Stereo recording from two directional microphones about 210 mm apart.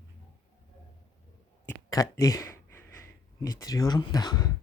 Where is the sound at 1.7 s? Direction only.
15° left (ahead or behind).